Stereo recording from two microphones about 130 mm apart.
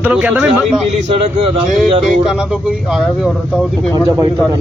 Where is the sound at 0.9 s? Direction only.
50° right (ahead or behind).